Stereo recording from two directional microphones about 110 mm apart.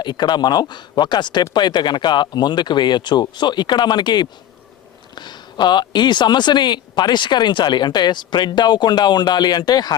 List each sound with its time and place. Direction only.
0.0 s speech: 40° left (ahead or behind)